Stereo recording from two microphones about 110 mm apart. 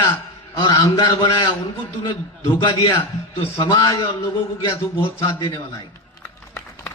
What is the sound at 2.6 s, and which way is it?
Speech, 45° left (ahead or behind).